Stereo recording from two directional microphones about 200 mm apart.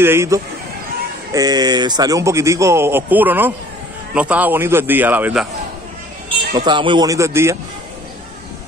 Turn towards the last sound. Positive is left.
turn(degrees=-15)  # may be behind; listen again after turning